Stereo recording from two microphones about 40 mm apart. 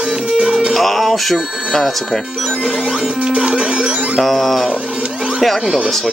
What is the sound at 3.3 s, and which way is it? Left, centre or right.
Music, right.